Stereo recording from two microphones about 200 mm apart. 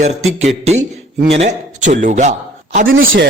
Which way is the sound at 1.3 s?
35° right (ahead or behind).